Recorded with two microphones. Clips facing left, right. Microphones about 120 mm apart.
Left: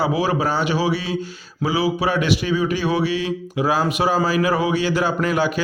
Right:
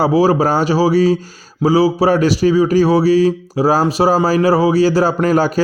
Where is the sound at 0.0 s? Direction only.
35° right (ahead or behind).